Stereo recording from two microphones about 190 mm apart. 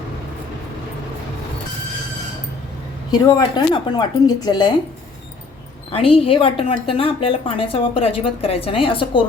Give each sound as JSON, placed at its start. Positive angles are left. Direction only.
{"t": 3.1, "sound": "a woman's voice", "side_deg": 20}
{"t": 5.9, "sound": "a woman's voice", "side_deg": 30}